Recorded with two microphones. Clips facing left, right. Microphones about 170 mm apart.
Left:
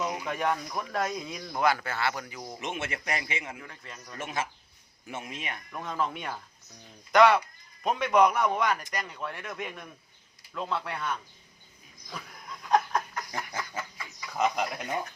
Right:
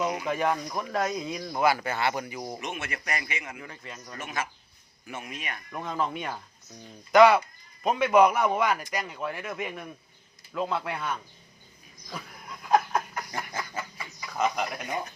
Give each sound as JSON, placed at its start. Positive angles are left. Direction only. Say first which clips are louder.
{"t": 0.0, "sound": "a sound", "louder": "right 3 dB", "side_deg": -15}
{"t": 0.3, "sound": "speech", "louder": "right 3 dB", "side_deg": -5}
{"t": 2.6, "sound": "a man's voice", "louder": "left 1 dB", "side_deg": 25}
{"t": 3.6, "sound": "a man's voice", "louder": "right 3 dB", "side_deg": -5}
{"t": 4.2, "sound": "a man's voice", "louder": "left 1 dB", "side_deg": 25}
{"t": 5.7, "sound": "a man's voice", "louder": "right 2 dB", "side_deg": 0}
{"t": 12.1, "sound": "laughter", "louder": "right 2 dB", "side_deg": -5}
{"t": 14.3, "sound": "speech", "louder": "even", "side_deg": 15}
{"t": 14.8, "sound": "speech", "louder": "even", "side_deg": -15}